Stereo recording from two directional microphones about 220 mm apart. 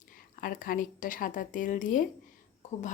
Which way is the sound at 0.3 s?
40° left (ahead or behind).